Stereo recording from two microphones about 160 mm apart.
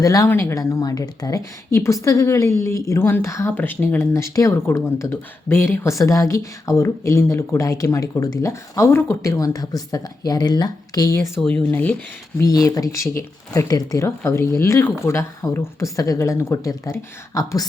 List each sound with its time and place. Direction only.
0.0 s speech: 20° left (ahead or behind)
11.3 s speech: 10° left (ahead or behind)
12.4 s speech: 20° left (ahead or behind)